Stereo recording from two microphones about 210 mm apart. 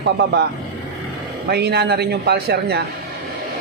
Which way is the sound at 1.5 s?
50° right (ahead or behind).